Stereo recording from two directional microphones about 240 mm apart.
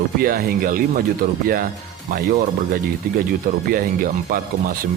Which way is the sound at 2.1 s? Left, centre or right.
Right.